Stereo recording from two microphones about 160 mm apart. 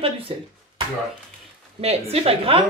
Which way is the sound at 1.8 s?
40° right (ahead or behind).